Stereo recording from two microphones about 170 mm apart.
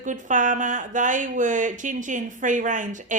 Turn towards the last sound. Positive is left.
turn(degrees=-50)  # may be behind; listen again after turning